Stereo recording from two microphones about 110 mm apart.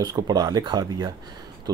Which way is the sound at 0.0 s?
40° right (ahead or behind).